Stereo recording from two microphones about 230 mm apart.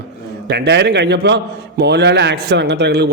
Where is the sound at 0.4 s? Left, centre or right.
Right.